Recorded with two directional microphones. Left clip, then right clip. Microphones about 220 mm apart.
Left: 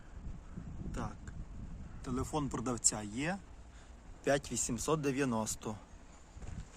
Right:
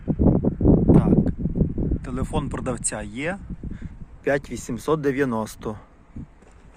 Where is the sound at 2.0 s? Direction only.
30° right (ahead or behind).